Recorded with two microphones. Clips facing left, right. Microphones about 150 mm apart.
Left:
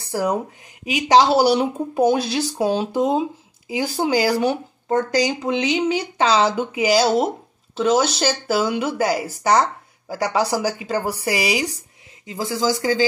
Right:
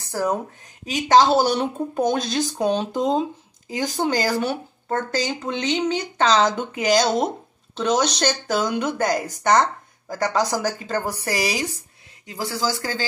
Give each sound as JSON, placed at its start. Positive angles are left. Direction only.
{"t": 0.1, "sound": "speech", "side_deg": 15}